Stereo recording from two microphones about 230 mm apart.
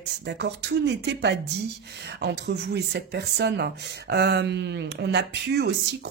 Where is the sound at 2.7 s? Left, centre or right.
Right.